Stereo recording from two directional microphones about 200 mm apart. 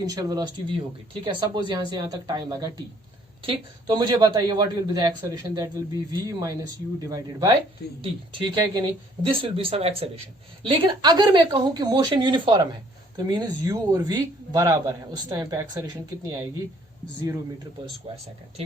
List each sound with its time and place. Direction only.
0.0 s a man's voice: 20° right (ahead or behind)
18.0 s a man's voice: 25° right (ahead or behind)